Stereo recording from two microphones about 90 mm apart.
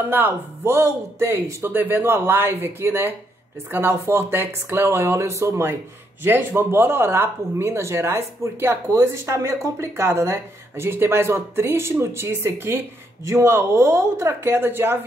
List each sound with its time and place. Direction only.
0.1 s speech: 25° right (ahead or behind)